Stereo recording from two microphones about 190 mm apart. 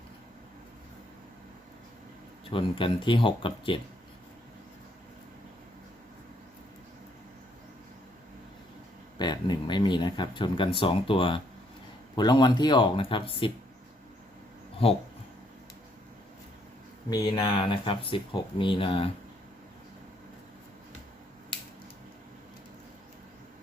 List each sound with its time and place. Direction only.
2.5 s speech: 25° left (ahead or behind)
9.1 s speech: 20° left (ahead or behind)
17.1 s speech: 20° left (ahead or behind)